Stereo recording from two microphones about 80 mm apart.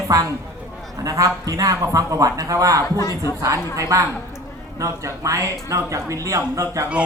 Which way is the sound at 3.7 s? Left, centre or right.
Right.